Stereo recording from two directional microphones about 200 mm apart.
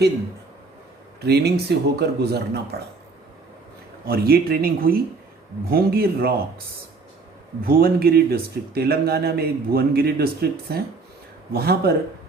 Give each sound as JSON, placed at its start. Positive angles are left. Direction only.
{"t": 1.2, "sound": "speech", "side_deg": -55}
{"t": 4.0, "sound": "speech", "side_deg": -50}
{"t": 7.6, "sound": "speech", "side_deg": -50}